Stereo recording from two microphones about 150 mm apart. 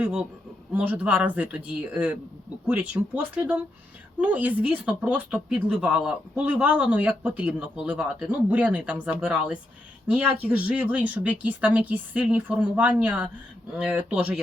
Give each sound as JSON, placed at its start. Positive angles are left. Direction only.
{"t": 0.0, "sound": "a man's voice", "side_deg": -5}